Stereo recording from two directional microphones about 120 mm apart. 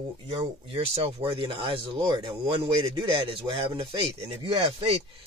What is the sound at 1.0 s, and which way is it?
Speech, 50° right (ahead or behind).